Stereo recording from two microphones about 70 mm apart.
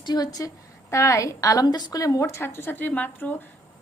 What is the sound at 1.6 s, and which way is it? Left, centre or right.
Speech, left.